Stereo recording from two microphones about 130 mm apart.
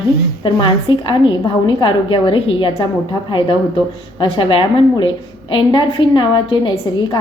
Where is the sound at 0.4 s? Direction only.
35° left (ahead or behind).